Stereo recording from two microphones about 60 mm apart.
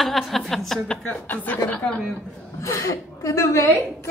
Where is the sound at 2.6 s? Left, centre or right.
Left.